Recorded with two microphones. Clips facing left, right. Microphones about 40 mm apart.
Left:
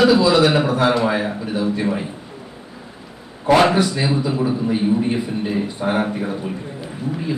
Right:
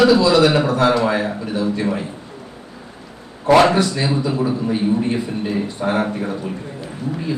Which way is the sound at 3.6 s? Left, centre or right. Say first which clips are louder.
Right 1 dB; centre.